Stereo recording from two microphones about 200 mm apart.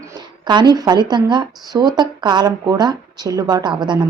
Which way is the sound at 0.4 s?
20° right (ahead or behind).